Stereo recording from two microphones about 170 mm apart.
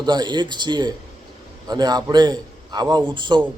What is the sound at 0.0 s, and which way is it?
A man's voice, 25° right (ahead or behind).